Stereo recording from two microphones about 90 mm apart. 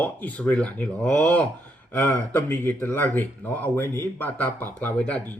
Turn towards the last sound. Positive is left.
turn(degrees=15)  # may be behind; listen again after turning